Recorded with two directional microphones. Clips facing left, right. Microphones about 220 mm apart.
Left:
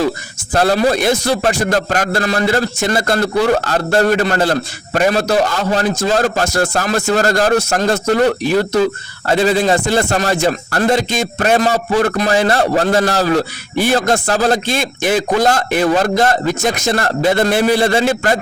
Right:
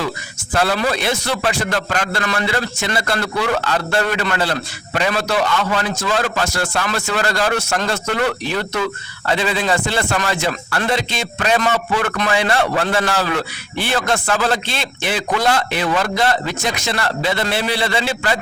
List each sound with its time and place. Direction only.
0.5 s a man's voice: 40° left (ahead or behind)